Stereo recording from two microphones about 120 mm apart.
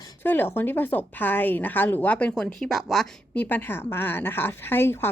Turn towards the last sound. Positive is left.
turn(degrees=20)  # may be behind; listen again after turning